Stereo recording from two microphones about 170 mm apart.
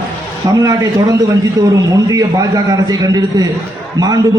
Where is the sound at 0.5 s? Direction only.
20° right (ahead or behind).